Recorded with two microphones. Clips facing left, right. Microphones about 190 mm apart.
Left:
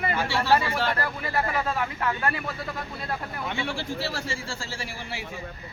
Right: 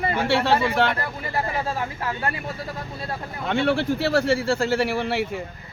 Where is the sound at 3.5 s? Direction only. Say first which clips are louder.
Right 12 dB; 65° right (ahead or behind).